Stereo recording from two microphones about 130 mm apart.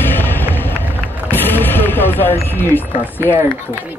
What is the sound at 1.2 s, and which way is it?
Speech, 15° left (ahead or behind).